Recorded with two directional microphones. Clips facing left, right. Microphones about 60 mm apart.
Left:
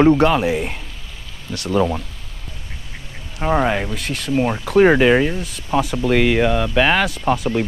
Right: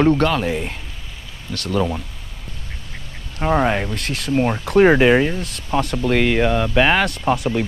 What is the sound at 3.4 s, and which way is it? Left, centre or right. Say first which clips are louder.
Speech: even; centre.